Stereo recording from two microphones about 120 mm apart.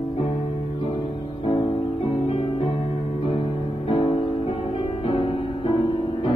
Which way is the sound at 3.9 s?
50° left (ahead or behind).